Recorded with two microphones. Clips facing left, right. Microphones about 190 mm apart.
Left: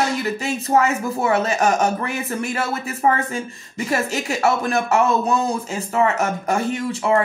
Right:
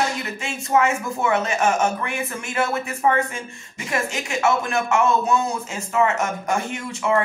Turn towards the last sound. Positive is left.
turn(degrees=35)  # may be behind; listen again after turning